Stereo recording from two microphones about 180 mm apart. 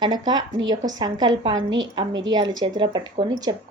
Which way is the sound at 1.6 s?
90° right.